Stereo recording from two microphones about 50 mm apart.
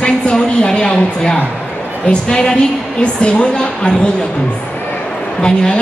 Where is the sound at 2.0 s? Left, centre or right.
Centre.